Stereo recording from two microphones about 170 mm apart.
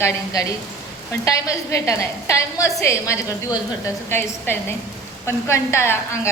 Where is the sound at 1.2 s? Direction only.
20° left (ahead or behind).